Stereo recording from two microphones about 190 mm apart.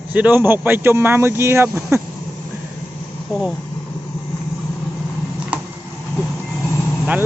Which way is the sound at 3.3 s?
Centre (ahead or behind).